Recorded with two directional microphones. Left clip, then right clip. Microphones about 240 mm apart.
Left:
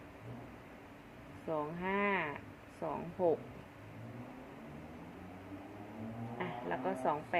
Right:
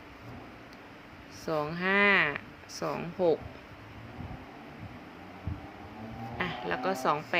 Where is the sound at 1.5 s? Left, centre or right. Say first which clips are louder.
Right 8 dB; right.